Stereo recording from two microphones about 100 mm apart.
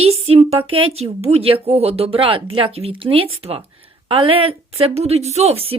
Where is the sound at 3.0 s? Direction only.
65° right (ahead or behind); by 5.6 s 90° right.